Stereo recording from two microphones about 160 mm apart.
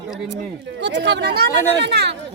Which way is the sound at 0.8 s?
90° right.